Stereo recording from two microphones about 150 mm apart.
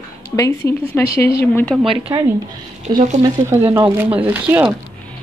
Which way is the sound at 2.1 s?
20° right (ahead or behind).